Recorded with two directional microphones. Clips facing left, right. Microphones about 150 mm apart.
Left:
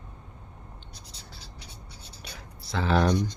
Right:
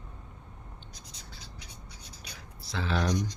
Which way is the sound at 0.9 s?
30° left (ahead or behind).